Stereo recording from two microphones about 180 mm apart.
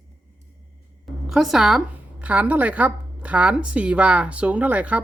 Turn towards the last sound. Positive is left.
turn(degrees=-10)  # may be behind; listen again after turning